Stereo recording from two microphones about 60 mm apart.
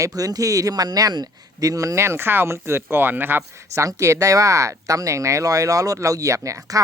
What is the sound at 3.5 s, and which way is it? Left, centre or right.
Speech, right.